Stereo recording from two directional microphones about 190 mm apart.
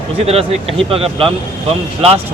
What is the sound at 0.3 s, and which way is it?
Speech, 30° right (ahead or behind).